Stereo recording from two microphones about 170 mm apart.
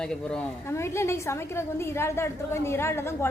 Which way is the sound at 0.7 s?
15° left (ahead or behind).